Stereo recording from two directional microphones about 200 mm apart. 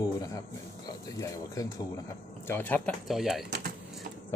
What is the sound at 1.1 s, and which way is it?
Speech, 15° left (ahead or behind).